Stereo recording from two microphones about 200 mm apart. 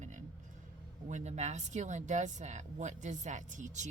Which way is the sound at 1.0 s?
35° right (ahead or behind).